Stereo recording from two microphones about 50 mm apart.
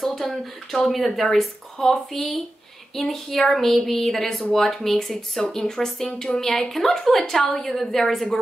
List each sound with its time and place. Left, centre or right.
0.0 s a woman's voice: centre